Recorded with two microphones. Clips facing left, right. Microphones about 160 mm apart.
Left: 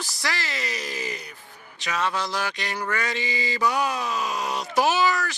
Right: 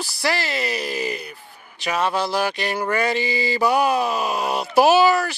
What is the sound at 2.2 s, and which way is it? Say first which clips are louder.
Speech: right 6 dB; 10° right (ahead or behind).